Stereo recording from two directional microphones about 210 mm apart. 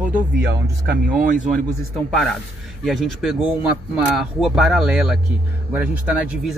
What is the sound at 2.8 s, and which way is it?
Speech, centre (ahead or behind).